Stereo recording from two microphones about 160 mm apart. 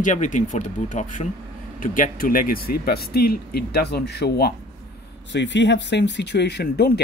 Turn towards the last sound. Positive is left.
turn(degrees=90)